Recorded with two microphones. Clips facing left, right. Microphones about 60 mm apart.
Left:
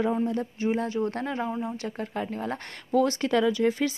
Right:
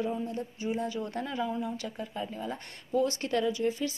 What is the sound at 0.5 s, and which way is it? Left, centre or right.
Speech, left.